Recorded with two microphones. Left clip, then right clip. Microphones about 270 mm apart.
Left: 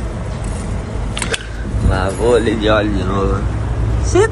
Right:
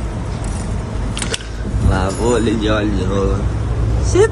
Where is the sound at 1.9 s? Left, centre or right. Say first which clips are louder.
Left 3 dB; right.